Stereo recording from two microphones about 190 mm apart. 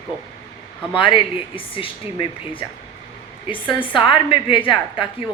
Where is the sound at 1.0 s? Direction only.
25° left (ahead or behind).